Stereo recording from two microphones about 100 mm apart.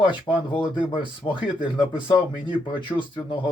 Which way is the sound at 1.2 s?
50° left (ahead or behind).